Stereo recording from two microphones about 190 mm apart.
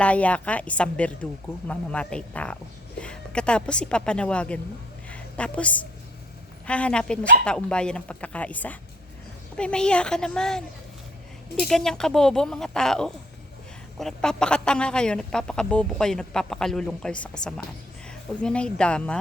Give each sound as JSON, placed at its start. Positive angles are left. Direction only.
{"t": 0.0, "sound": "a woman's voice", "side_deg": 5}
{"t": 5.0, "sound": "a sound", "side_deg": 5}
{"t": 6.7, "sound": "a woman's voice", "side_deg": 5}
{"t": 11.6, "sound": "a woman's voice", "side_deg": 0}
{"t": 18.4, "sound": "a woman's voice", "side_deg": 5}